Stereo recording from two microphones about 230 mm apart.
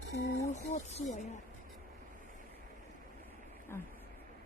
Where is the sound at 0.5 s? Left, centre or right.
Left.